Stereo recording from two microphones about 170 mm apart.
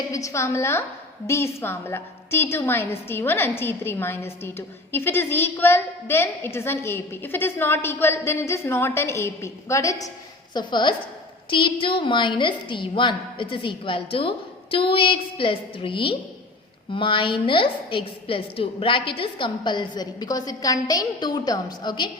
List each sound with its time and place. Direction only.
0.1 s a woman's voice: 20° left (ahead or behind)